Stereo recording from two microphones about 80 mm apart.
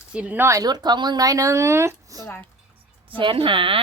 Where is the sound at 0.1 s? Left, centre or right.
Centre.